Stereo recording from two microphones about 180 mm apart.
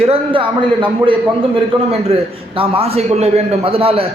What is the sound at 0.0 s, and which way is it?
A man's voice, 30° right (ahead or behind).